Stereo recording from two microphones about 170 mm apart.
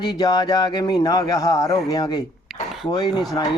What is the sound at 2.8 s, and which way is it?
Speech, 25° left (ahead or behind).